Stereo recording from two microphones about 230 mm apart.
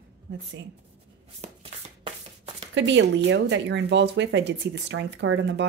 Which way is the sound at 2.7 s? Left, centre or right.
Right.